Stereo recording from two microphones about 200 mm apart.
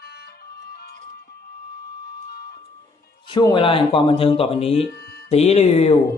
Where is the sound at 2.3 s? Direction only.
50° left (ahead or behind).